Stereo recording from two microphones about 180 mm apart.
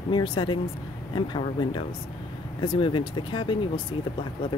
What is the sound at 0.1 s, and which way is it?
Speech, 25° left (ahead or behind).